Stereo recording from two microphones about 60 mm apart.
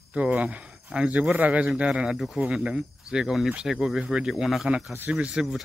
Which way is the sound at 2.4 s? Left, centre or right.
Centre.